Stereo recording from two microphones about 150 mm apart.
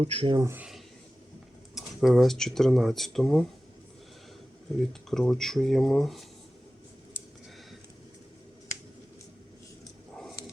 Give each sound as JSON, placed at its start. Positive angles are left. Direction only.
{"t": 0.0, "sound": "speech", "side_deg": -35}
{"t": 0.4, "sound": "speech", "side_deg": -15}
{"t": 1.7, "sound": "speech", "side_deg": 0}
{"t": 4.9, "sound": "speech", "side_deg": 5}